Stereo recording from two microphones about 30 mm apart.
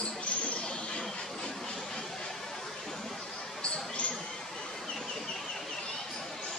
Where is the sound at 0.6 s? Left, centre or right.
Left.